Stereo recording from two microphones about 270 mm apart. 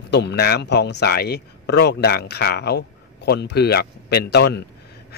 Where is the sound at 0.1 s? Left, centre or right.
Left.